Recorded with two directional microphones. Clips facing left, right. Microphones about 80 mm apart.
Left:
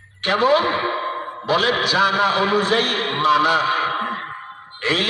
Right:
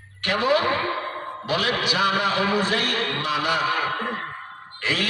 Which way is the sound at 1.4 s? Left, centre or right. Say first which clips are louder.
Left 5 dB; left.